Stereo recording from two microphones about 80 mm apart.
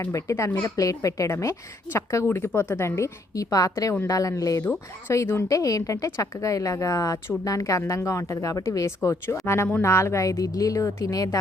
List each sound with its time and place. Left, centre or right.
0.0 s a woman's voice: left
4.6 s speech: left
5.1 s a woman's voice: left